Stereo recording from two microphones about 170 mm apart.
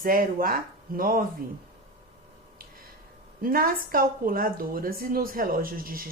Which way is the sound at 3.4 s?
55° right (ahead or behind).